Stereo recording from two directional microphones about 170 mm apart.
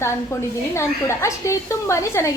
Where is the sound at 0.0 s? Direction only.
15° left (ahead or behind).